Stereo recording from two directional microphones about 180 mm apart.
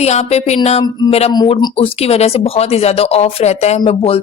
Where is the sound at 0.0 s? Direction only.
35° left (ahead or behind).